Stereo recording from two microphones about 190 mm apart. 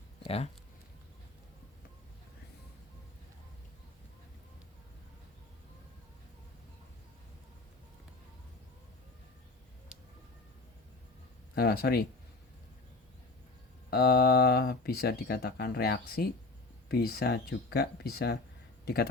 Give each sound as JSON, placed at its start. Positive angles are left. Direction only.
{"t": 0.3, "sound": "speech", "side_deg": 30}
{"t": 11.5, "sound": "speech", "side_deg": 55}
{"t": 13.9, "sound": "speech", "side_deg": 55}